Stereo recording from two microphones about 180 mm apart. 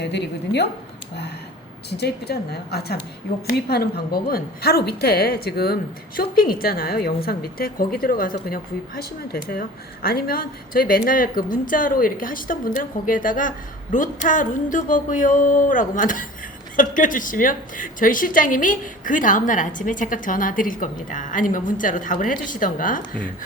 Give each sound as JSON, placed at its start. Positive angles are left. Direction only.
{"t": 0.0, "sound": "a woman's voice", "side_deg": 70}
{"t": 1.9, "sound": "a woman's voice", "side_deg": 65}